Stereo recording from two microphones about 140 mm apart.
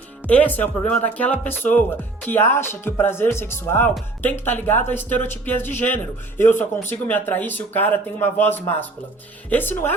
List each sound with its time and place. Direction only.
0.3 s speech: 10° left (ahead or behind)